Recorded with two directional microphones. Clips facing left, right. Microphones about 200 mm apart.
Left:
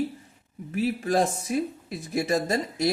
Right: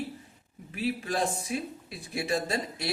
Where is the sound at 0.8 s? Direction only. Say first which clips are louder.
Left 5 dB; 45° left (ahead or behind).